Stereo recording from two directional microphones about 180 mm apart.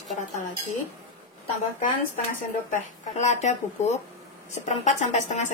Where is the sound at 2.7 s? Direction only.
40° left (ahead or behind).